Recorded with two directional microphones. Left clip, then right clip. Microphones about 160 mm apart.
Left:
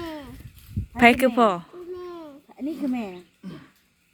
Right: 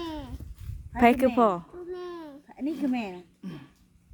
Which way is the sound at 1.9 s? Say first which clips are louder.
Left 1 dB; 20° right (ahead or behind).